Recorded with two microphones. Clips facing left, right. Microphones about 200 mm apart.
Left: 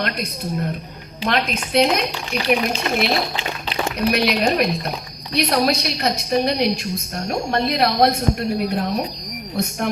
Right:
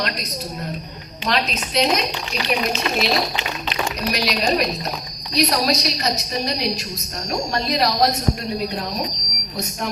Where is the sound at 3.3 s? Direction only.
30° left (ahead or behind).